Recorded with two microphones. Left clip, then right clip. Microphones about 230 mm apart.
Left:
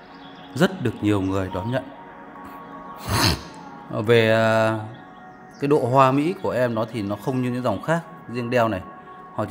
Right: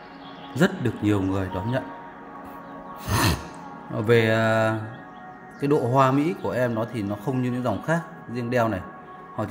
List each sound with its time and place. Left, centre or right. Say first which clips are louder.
0.7 s speech: left 2 dB; centre
3.1 s music: left 2 dB; centre
3.9 s speech: left 3 dB; centre